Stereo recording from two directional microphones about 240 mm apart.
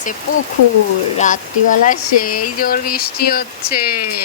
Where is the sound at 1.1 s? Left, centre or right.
Left.